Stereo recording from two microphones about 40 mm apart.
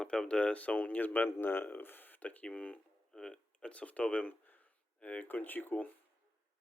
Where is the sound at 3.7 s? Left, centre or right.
Left.